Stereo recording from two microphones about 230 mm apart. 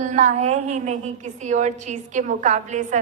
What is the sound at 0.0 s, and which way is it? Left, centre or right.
A woman's voice, right.